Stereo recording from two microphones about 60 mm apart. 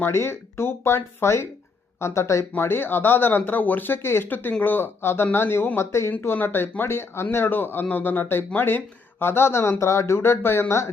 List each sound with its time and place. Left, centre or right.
0.0 s speech: left
2.5 s speech: left